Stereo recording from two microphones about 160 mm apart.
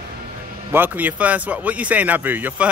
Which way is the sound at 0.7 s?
10° right (ahead or behind).